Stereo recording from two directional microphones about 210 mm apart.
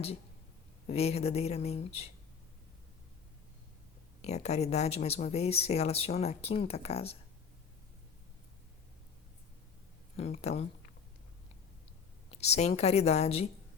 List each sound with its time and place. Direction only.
0.9 s speech: 30° left (ahead or behind)
4.2 s speech: 30° left (ahead or behind)
10.2 s a woman's voice: 30° left (ahead or behind)
12.3 s a woman's voice: 30° left (ahead or behind)